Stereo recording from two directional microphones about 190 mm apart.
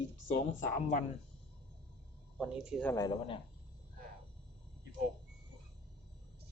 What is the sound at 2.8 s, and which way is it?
Speech, 15° left (ahead or behind).